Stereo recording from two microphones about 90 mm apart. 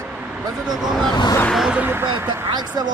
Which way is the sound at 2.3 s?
55° right (ahead or behind).